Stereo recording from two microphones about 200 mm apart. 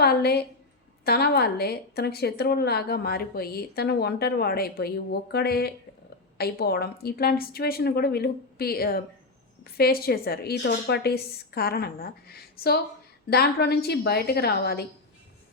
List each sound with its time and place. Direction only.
0.0 s a woman's voice: 55° left (ahead or behind)